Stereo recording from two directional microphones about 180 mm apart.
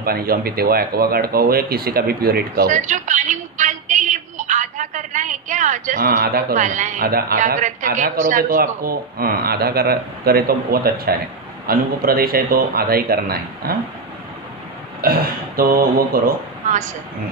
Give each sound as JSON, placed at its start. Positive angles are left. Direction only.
{"t": 0.0, "sound": "a man's voice", "side_deg": -55}
{"t": 15.0, "sound": "speech", "side_deg": -55}